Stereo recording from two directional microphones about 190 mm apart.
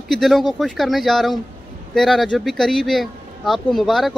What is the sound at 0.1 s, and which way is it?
A man's voice, centre (ahead or behind).